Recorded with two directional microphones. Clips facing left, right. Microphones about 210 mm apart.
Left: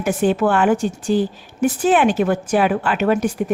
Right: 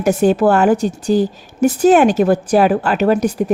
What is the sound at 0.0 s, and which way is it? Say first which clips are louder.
A woman's voice: right 4 dB; 40° right (ahead or behind).